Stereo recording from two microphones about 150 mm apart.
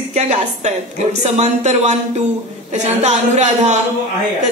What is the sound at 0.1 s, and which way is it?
A woman's voice, 50° right (ahead or behind).